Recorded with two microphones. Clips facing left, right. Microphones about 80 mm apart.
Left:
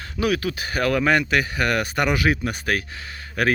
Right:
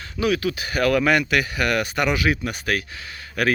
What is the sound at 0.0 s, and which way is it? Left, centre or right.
Speech, left.